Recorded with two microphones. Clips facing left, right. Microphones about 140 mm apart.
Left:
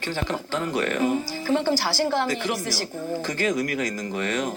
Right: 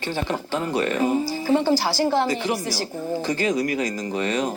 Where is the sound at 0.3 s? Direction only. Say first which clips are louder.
Right 2 dB; 20° right (ahead or behind).